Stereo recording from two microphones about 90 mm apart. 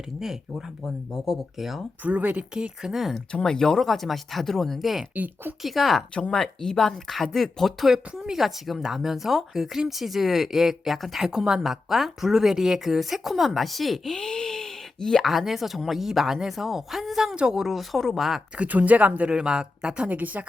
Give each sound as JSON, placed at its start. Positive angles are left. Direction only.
{"t": 0.2, "sound": "speech", "side_deg": -5}
{"t": 2.0, "sound": "speech", "side_deg": -15}
{"t": 3.3, "sound": "speech", "side_deg": 10}
{"t": 5.1, "sound": "speech", "side_deg": -20}
{"t": 5.6, "sound": "speech", "side_deg": 0}
{"t": 18.5, "sound": "speech", "side_deg": -15}